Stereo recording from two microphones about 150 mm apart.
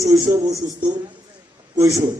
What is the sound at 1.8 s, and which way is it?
Speech, 20° right (ahead or behind).